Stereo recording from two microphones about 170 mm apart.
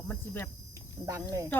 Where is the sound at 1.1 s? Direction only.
20° right (ahead or behind).